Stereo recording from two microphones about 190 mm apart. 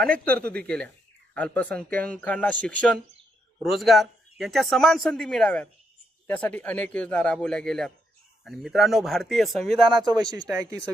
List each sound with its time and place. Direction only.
0.0 s speech: 5° left (ahead or behind)
10.3 s speech: 20° right (ahead or behind)